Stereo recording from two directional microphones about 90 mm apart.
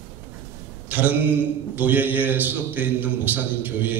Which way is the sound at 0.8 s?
20° right (ahead or behind).